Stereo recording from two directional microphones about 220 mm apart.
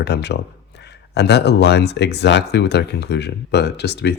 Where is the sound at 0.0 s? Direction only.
50° left (ahead or behind).